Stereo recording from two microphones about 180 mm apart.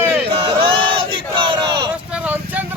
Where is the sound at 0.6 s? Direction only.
30° right (ahead or behind).